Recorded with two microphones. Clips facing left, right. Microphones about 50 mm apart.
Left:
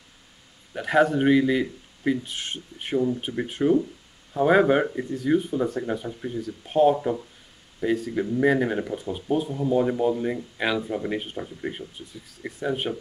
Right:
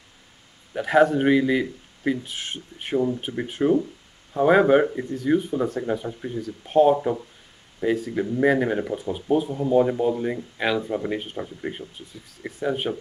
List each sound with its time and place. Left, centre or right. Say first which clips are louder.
0.7 s speech: right 2 dB; centre